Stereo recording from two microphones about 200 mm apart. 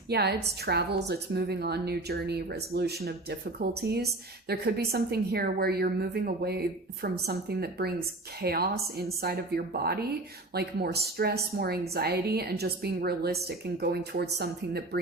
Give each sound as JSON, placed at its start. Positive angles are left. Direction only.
{"t": 0.1, "sound": "a woman's voice", "side_deg": -55}